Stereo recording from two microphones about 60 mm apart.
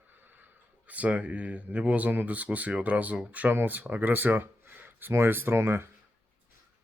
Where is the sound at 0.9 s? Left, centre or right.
Right.